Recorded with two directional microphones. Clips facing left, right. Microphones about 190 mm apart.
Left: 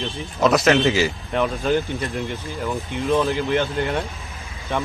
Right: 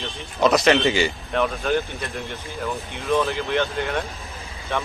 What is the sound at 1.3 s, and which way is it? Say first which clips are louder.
Speech: left 2 dB; 15° left (ahead or behind).